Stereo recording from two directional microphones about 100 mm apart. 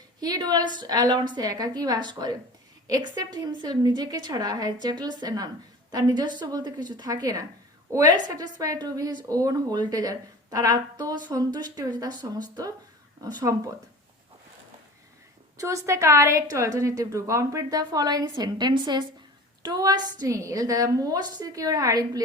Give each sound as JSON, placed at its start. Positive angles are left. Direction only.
{"t": 0.2, "sound": "a woman's voice", "side_deg": -40}
{"t": 15.5, "sound": "a woman's voice", "side_deg": -30}